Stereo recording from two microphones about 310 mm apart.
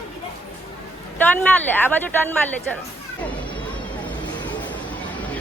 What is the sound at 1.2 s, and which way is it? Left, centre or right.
Speech, centre.